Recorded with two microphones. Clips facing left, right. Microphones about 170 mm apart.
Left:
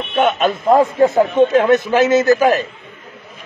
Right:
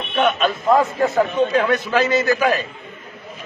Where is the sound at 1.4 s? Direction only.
50° left (ahead or behind).